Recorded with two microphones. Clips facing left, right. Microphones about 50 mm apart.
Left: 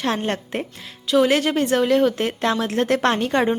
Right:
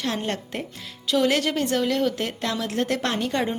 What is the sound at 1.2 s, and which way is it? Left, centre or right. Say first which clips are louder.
Speech: left 4 dB; left.